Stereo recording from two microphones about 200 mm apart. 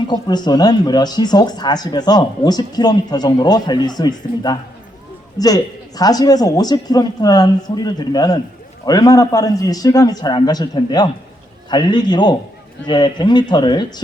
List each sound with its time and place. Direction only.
0.1 s speech: 20° left (ahead or behind)